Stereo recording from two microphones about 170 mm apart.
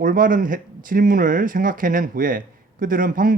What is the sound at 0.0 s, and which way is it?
Speech, 55° right (ahead or behind).